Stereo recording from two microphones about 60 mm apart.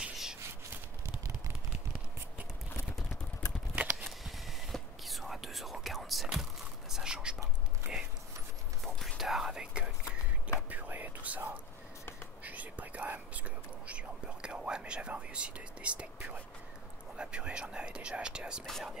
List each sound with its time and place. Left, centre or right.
0.0 s a sound: centre
3.7 s a sound: right
4.0 s whispering: centre
6.9 s whispering: centre
8.8 s whispering: centre
10.7 s whispering: right
18.7 s whispering: centre